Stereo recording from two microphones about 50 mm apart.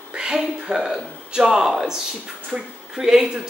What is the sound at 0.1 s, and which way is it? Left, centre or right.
Speech, centre.